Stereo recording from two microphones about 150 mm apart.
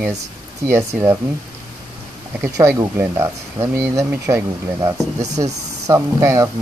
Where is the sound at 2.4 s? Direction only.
20° right (ahead or behind).